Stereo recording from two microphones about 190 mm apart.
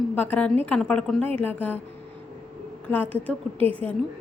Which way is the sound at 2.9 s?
10° left (ahead or behind).